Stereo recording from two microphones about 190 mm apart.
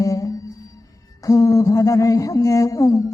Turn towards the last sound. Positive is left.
turn(degrees=15)  # may be behind; listen again after turning